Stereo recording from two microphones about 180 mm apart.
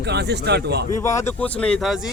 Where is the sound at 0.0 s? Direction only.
70° right (ahead or behind).